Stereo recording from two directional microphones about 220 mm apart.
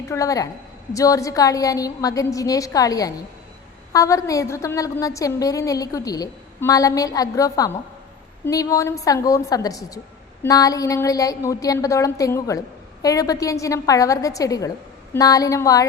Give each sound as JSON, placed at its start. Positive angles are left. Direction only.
{"t": 0.1, "sound": "a woman's voice", "side_deg": 15}